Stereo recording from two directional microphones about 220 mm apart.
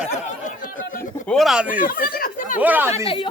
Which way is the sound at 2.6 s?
10° right (ahead or behind).